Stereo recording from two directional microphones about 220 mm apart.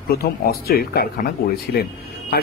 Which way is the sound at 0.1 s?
45° left (ahead or behind).